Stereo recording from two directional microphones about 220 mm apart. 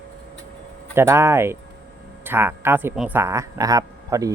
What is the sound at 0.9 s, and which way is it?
Speech, 10° right (ahead or behind).